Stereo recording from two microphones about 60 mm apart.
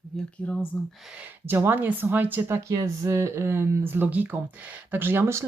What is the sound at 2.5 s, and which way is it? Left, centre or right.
Speech, right.